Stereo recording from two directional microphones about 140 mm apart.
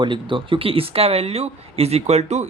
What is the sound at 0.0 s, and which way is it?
Speech, 35° right (ahead or behind).